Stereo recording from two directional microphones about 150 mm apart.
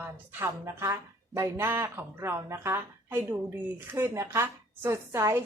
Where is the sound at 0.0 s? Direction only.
15° right (ahead or behind).